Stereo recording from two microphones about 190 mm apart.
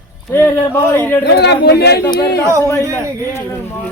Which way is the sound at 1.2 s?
60° left (ahead or behind).